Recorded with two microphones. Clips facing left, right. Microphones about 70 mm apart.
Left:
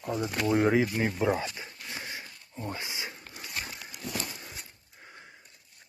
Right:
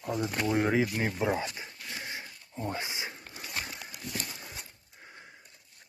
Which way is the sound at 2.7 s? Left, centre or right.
Right.